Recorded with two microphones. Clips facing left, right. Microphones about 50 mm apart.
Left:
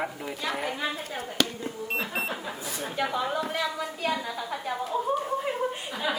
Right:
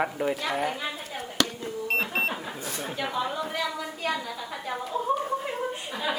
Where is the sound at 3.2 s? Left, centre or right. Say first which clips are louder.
Left 1 dB; centre.